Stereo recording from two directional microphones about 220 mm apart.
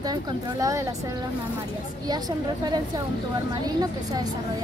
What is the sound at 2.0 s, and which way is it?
Speech, 20° right (ahead or behind).